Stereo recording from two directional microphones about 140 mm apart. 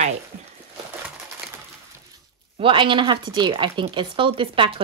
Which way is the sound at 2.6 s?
35° right (ahead or behind).